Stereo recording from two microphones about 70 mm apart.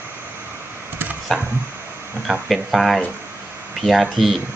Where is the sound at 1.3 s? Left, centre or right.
Centre.